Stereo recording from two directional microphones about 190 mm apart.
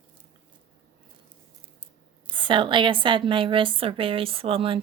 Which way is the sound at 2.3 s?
25° right (ahead or behind).